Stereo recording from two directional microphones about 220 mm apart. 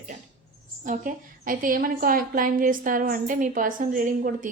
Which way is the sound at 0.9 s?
40° right (ahead or behind).